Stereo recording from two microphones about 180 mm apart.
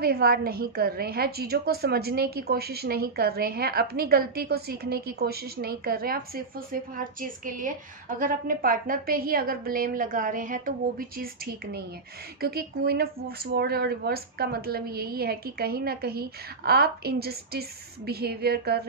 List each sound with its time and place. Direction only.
0.0 s a woman's voice: 60° right (ahead or behind)